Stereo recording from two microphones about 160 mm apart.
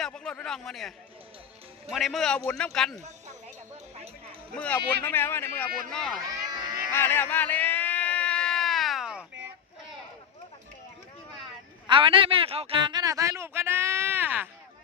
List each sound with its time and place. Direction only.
0.0 s a man's voice: 5° left (ahead or behind)
4.5 s speech: 5° left (ahead or behind)
5.9 s a man's voice: 5° left (ahead or behind)
6.5 s cat: 25° right (ahead or behind)
6.9 s a sound: 15° left (ahead or behind); by 9.2 s centre (ahead or behind)
11.9 s a sound: 30° right (ahead or behind); by 14.5 s 10° right (ahead or behind)